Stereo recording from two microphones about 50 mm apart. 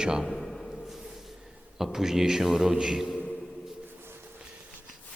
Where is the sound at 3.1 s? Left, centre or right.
Left.